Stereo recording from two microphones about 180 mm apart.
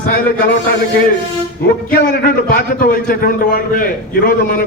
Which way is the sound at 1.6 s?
60° left (ahead or behind).